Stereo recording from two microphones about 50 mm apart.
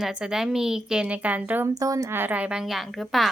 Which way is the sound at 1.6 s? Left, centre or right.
Right.